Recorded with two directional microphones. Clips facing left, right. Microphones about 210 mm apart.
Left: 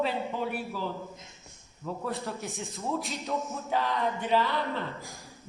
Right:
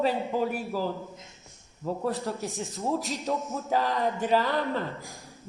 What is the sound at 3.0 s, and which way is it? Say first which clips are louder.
Speech: right 2 dB; centre (ahead or behind).